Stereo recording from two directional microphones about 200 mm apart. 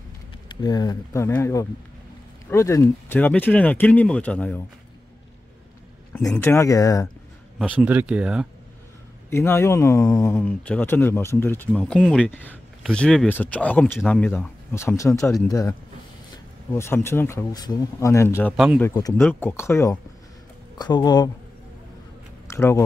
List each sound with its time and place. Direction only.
0.6 s speech: 20° left (ahead or behind)
6.1 s speech: 10° left (ahead or behind)
7.5 s speech: 5° right (ahead or behind)
9.3 s speech: 10° left (ahead or behind)
16.7 s speech: 10° left (ahead or behind)
22.5 s speech: 15° left (ahead or behind)